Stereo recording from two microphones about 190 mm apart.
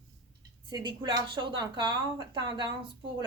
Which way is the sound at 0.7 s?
20° right (ahead or behind).